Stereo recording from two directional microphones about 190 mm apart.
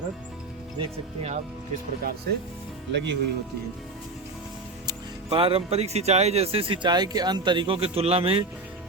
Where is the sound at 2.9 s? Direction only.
65° right (ahead or behind).